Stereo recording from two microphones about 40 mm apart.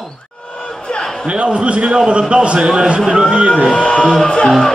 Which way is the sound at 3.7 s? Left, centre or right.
Left.